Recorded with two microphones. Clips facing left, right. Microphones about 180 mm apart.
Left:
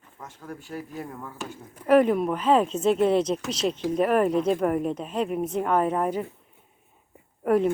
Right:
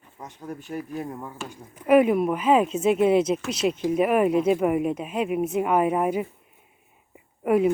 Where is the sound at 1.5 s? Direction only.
10° right (ahead or behind).